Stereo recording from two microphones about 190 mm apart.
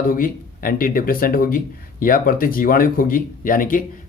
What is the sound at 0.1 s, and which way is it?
Speech, 50° left (ahead or behind).